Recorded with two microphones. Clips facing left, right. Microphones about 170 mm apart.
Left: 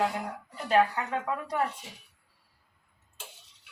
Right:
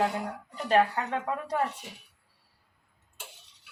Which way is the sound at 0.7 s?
30° right (ahead or behind).